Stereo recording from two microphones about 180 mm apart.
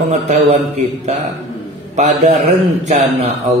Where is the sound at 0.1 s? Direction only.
40° right (ahead or behind).